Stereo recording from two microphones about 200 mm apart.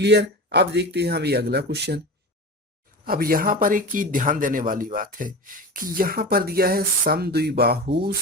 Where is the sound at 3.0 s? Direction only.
50° right (ahead or behind).